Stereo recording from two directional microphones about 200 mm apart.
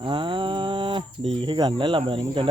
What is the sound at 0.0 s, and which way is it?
Speech, 25° right (ahead or behind).